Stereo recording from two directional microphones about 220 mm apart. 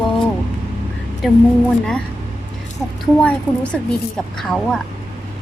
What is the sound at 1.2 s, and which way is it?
Speech, centre (ahead or behind).